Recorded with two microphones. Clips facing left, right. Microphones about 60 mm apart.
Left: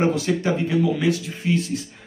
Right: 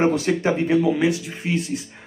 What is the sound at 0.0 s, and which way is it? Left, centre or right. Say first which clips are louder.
Speech: right 2 dB; right.